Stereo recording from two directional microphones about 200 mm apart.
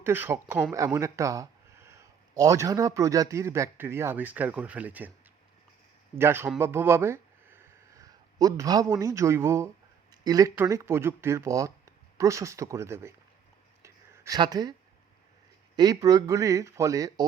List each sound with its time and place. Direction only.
0.0 s speech: 10° right (ahead or behind)
6.1 s speech: 10° right (ahead or behind)
13.8 s a sound: 15° right (ahead or behind)
15.7 s speech: 20° right (ahead or behind)